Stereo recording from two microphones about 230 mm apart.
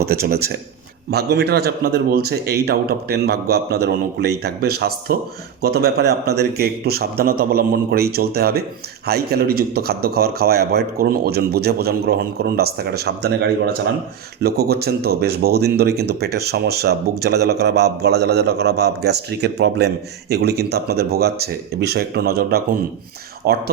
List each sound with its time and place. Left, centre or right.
0.0 s a man's voice: right